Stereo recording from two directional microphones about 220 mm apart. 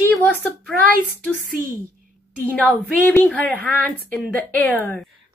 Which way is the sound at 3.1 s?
10° left (ahead or behind).